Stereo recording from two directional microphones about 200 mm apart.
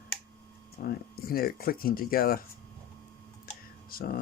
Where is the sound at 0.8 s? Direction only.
45° left (ahead or behind).